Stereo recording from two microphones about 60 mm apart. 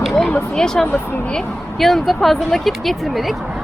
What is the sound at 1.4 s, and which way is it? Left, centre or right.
Speech, centre.